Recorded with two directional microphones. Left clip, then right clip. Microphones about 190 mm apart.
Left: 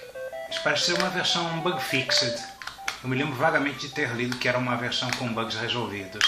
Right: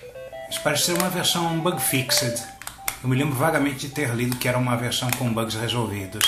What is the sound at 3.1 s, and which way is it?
Speech, 20° right (ahead or behind).